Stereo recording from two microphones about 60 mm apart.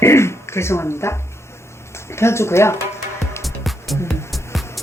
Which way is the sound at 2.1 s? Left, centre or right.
Left.